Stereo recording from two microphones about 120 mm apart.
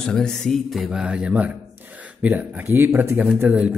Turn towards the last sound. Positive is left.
turn(degrees=-10)  # may be behind; listen again after turning